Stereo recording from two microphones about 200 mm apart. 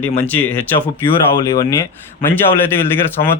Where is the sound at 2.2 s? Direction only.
10° left (ahead or behind).